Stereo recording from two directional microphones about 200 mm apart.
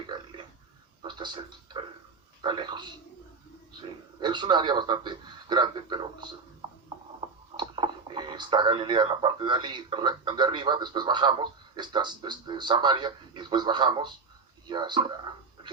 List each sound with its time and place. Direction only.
0.1 s burping: 25° right (ahead or behind)
1.0 s television: 20° right (ahead or behind)
2.4 s a man's voice: 25° right (ahead or behind)
4.2 s a man's voice: 20° right (ahead or behind)
7.5 s speech: 25° right (ahead or behind)
14.7 s a sound: 20° right (ahead or behind)